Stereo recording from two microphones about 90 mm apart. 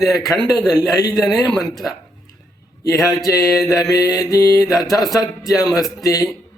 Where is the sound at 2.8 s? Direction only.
40° left (ahead or behind).